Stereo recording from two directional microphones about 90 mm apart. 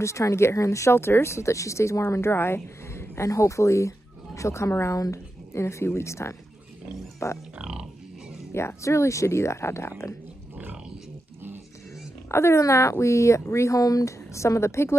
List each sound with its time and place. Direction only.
0.0 s speech: 35° left (ahead or behind)
7.5 s grunt: 10° right (ahead or behind)
8.5 s speech: 30° left (ahead or behind)
12.3 s speech: 30° left (ahead or behind)